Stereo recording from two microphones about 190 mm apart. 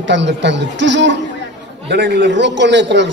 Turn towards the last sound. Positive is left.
turn(degrees=-70)  # may be behind; listen again after turning